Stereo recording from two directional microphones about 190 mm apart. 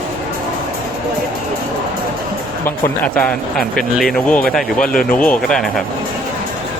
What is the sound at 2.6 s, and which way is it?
Speech, 10° left (ahead or behind).